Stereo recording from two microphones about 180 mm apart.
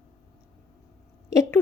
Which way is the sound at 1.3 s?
15° left (ahead or behind).